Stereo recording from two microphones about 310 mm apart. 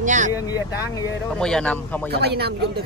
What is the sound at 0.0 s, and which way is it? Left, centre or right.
Speech, right.